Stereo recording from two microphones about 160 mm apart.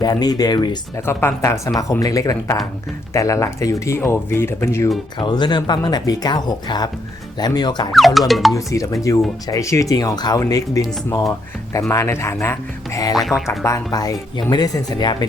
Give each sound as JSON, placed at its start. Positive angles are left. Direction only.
{"t": 0.0, "sound": "speech", "side_deg": 25}
{"t": 5.2, "sound": "speech", "side_deg": 30}
{"t": 7.9, "sound": "speech", "side_deg": 0}
{"t": 8.5, "sound": "speech", "side_deg": 20}
{"t": 13.1, "sound": "speech", "side_deg": 0}
{"t": 13.7, "sound": "speech", "side_deg": 20}